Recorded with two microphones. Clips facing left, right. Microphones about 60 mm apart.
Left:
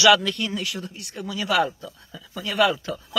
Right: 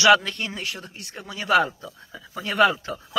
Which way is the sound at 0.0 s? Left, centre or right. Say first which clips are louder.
Even; right.